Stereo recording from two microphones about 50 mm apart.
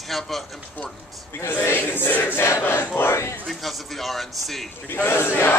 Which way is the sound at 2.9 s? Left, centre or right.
Left.